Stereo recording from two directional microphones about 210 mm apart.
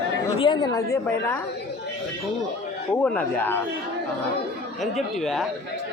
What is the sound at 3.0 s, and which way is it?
Speech, 10° left (ahead or behind).